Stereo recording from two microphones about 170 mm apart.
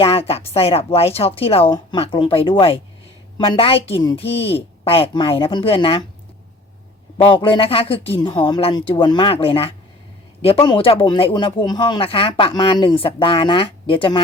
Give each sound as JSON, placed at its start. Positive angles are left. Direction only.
{"t": 0.0, "sound": "speech", "side_deg": 35}
{"t": 7.3, "sound": "speech", "side_deg": 30}